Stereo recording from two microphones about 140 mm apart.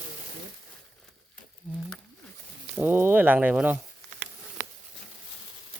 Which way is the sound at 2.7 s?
15° right (ahead or behind).